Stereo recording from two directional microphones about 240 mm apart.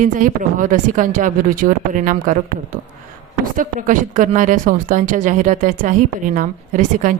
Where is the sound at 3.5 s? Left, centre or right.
Right.